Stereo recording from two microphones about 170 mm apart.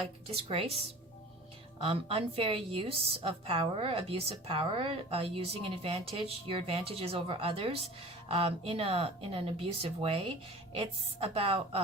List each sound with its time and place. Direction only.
0.3 s a woman's voice: 35° right (ahead or behind)
1.8 s a woman's voice: 35° right (ahead or behind)